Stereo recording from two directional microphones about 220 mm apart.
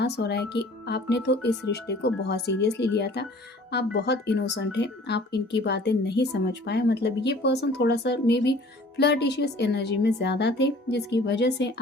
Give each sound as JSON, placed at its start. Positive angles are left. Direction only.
{"t": 0.0, "sound": "speech", "side_deg": 50}